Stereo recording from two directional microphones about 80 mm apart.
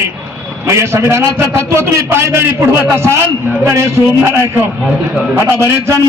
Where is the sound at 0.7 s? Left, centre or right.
Right.